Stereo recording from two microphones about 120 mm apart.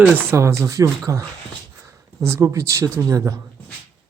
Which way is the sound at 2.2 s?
20° right (ahead or behind).